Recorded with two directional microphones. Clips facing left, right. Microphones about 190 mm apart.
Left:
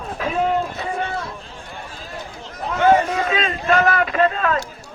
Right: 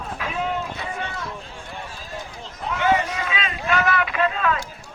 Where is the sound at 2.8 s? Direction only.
50° left (ahead or behind).